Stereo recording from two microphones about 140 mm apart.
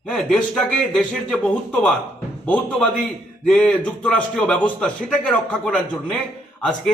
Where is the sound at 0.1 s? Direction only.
5° left (ahead or behind).